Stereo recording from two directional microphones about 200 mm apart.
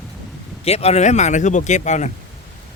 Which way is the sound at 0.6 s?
30° left (ahead or behind).